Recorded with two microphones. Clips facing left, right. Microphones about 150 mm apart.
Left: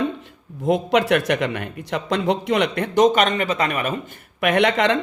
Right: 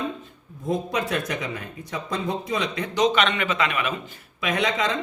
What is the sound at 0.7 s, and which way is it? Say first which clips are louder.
Speech: left 8 dB; 80° left.